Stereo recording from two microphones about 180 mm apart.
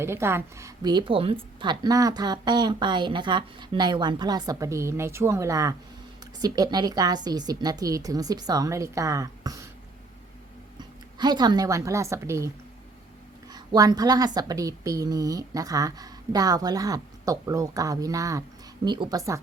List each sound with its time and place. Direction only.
0.0 s a woman's voice: 15° right (ahead or behind)
10.8 s speech: 25° right (ahead or behind)
13.5 s a woman's voice: 20° right (ahead or behind)